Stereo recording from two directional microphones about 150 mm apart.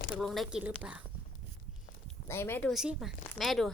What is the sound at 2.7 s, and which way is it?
Speech, 5° right (ahead or behind).